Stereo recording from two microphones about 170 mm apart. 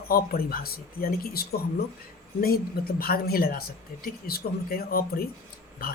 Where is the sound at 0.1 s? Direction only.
60° left (ahead or behind).